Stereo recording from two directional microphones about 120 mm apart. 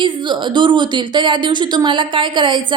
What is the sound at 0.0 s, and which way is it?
Speech, 40° right (ahead or behind).